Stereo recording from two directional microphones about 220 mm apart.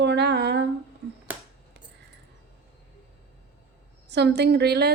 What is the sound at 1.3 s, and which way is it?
Finger snapping, 10° right (ahead or behind).